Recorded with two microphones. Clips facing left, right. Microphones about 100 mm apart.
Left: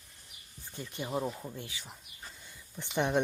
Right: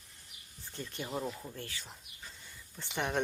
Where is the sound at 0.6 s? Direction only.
15° left (ahead or behind).